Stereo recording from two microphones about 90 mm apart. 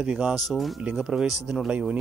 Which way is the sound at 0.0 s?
10° right (ahead or behind).